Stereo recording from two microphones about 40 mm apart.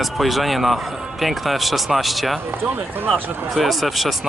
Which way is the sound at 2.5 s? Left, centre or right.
Right.